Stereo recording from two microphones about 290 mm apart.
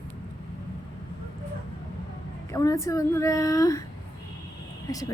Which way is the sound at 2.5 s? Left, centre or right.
Centre.